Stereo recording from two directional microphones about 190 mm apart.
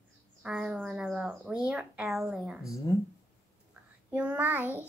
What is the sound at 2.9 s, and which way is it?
Speech, 20° left (ahead or behind).